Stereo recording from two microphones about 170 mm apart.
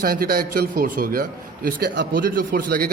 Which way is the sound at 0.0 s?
60° right (ahead or behind).